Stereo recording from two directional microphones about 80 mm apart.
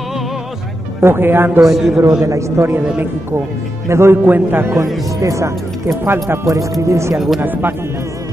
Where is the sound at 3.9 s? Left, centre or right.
Right.